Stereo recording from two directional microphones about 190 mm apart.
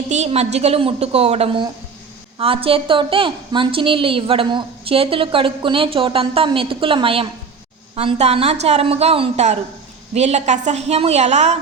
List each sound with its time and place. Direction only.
0.1 s a woman's voice: 35° right (ahead or behind)